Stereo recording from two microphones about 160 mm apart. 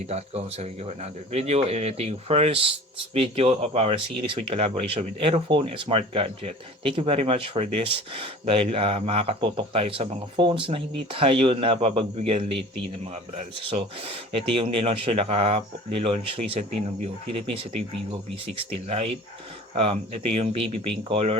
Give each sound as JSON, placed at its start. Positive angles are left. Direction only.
{"t": 0.1, "sound": "speech", "side_deg": -40}